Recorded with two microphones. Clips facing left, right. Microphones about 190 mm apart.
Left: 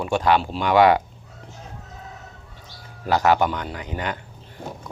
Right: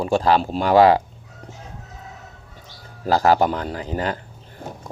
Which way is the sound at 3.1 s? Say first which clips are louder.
Right 2 dB; 35° right (ahead or behind).